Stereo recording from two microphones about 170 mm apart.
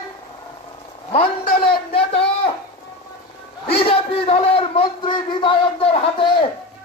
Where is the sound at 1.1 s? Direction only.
30° left (ahead or behind).